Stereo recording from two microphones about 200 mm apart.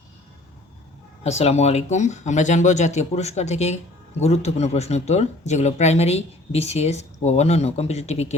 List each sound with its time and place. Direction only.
1.2 s speech: 30° left (ahead or behind)